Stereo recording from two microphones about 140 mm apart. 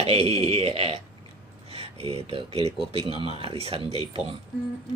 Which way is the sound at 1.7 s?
45° right (ahead or behind).